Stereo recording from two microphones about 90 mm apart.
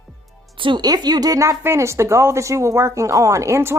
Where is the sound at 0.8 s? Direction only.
50° right (ahead or behind).